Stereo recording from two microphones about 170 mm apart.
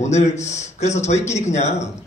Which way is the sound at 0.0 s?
40° left (ahead or behind).